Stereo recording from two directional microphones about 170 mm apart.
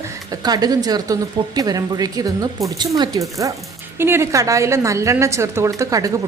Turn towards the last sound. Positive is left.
turn(degrees=-20)  # may be behind; listen again after turning